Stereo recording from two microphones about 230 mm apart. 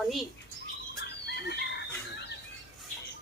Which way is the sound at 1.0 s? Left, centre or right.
Left.